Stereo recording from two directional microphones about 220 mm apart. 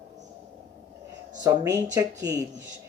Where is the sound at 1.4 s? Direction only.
15° right (ahead or behind).